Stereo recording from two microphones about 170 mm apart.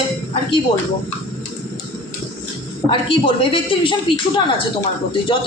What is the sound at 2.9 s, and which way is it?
A man's voice, 30° left (ahead or behind).